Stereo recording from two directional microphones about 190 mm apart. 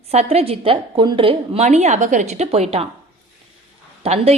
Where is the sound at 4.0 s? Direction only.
30° right (ahead or behind).